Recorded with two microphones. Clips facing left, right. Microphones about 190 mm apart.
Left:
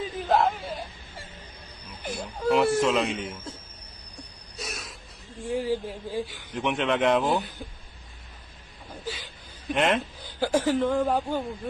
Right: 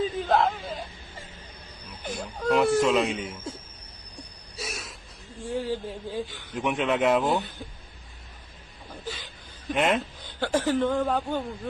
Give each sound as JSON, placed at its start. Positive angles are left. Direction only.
{"t": 0.0, "sound": "whimper", "side_deg": 10}
{"t": 2.0, "sound": "speech", "side_deg": 10}
{"t": 4.6, "sound": "a sound", "side_deg": 0}
{"t": 5.5, "sound": "a man's voice", "side_deg": 10}
{"t": 6.6, "sound": "speech", "side_deg": -5}
{"t": 7.2, "sound": "a man's voice", "side_deg": 10}
{"t": 9.0, "sound": "chuckle", "side_deg": 10}
{"t": 9.8, "sound": "speech", "side_deg": 0}